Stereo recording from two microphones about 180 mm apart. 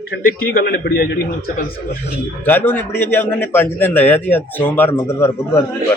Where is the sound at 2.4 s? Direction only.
10° left (ahead or behind).